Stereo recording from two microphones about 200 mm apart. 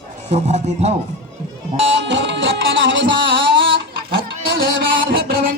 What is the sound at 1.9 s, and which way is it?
Music, 65° right (ahead or behind).